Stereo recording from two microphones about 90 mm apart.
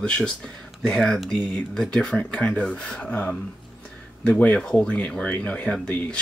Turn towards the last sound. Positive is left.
turn(degrees=15)  # may be behind; listen again after turning